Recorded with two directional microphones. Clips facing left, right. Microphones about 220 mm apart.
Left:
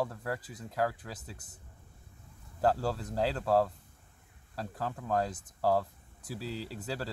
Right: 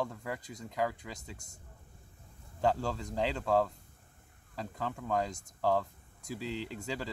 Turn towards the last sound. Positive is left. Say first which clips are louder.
# right 1 dB
turn(degrees=40)  # may be behind; listen again after turning